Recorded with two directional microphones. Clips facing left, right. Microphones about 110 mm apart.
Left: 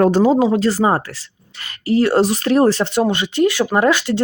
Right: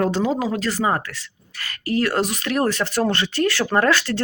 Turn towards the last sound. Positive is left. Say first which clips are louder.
# left 3 dB
turn(degrees=15)  # may be behind; listen again after turning